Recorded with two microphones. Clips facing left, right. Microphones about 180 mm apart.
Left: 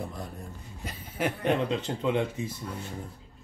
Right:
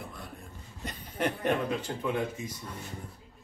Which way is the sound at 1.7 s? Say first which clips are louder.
Left 3 dB; 25° left (ahead or behind).